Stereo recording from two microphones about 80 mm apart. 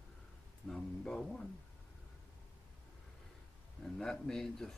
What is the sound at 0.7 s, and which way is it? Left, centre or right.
Speech, centre.